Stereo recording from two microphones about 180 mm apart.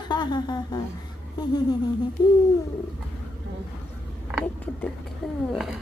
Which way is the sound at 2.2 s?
25° left (ahead or behind).